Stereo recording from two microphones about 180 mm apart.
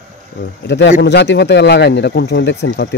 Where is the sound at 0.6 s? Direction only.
75° left (ahead or behind).